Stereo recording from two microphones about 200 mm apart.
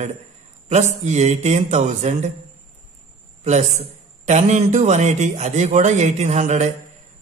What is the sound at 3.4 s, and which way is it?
Speech, 35° right (ahead or behind).